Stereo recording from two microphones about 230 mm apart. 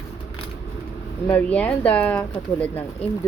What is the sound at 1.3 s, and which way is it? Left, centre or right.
Speech, centre.